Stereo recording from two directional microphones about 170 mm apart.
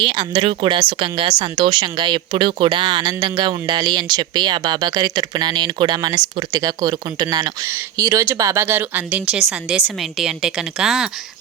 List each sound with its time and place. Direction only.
0.0 s a woman's voice: 30° right (ahead or behind); by 11.1 s centre (ahead or behind)